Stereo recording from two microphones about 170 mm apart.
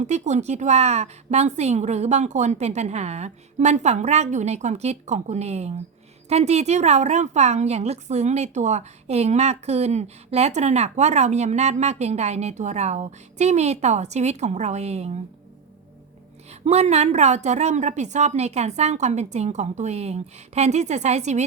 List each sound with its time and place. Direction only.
0.0 s a woman's voice: 40° right (ahead or behind)
16.5 s a woman's voice: 40° right (ahead or behind)